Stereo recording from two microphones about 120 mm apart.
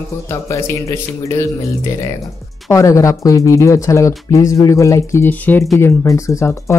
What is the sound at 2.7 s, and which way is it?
Speech, 25° left (ahead or behind).